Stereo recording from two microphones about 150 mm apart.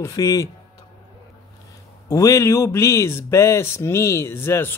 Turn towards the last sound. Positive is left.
turn(degrees=15)  # may be behind; listen again after turning